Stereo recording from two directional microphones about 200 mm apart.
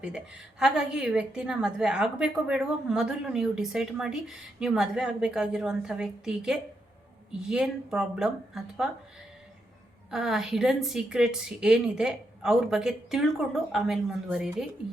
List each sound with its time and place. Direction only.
0.6 s a woman's voice: 5° right (ahead or behind)
10.1 s a woman's voice: centre (ahead or behind)